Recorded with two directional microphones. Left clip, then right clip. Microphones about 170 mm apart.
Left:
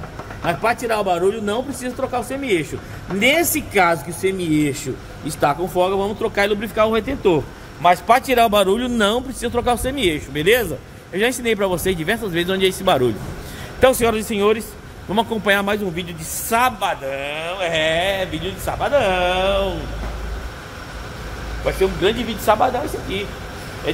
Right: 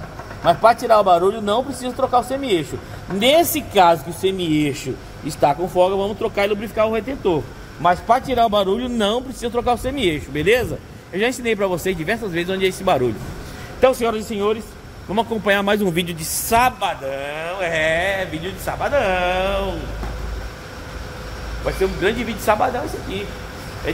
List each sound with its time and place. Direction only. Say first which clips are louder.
0.5 s a man's voice: right 6 dB; 10° right (ahead or behind)
4.2 s speech: even; 35° left (ahead or behind)
5.4 s speech: right 2 dB; centre (ahead or behind); by 14.6 s 20° left (ahead or behind)
15.0 s speech: left 1 dB; 10° left (ahead or behind)
15.9 s a woman's voice: right 5 dB; 55° right (ahead or behind)
16.4 s a man's voice: right 1 dB; 10° right (ahead or behind)
21.6 s speech: left 2 dB; centre (ahead or behind)